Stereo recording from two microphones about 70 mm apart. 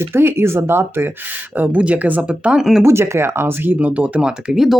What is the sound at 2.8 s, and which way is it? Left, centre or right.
Speech, right.